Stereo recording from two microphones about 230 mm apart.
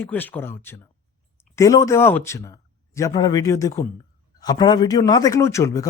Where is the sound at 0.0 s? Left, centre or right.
Centre.